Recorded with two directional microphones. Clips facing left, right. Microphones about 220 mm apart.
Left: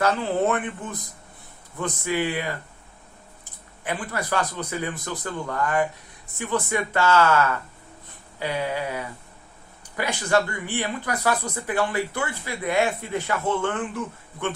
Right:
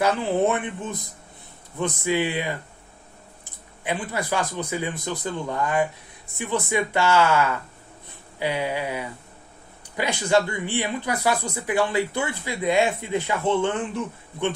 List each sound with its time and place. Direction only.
0.0 s speech: 15° right (ahead or behind)
2.0 s speech: 20° right (ahead or behind)
3.8 s speech: 15° right (ahead or behind)